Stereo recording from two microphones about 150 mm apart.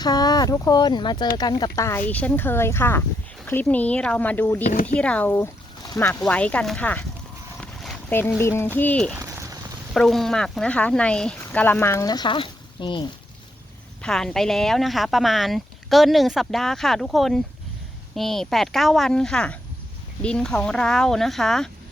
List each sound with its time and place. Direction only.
0.0 s speech: 25° left (ahead or behind)
4.6 s speech: 55° left (ahead or behind)
4.9 s speech: 10° left (ahead or behind)
7.6 s boat: centre (ahead or behind)
8.1 s speech: 15° left (ahead or behind); by 13.1 s 35° left (ahead or behind)
14.0 s speech: 5° left (ahead or behind)